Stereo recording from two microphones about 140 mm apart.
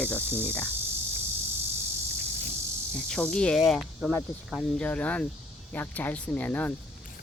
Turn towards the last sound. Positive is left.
turn(degrees=10)  # may be behind; listen again after turning